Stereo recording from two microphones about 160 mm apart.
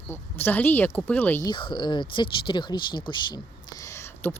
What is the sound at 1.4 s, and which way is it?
Speech, 30° left (ahead or behind).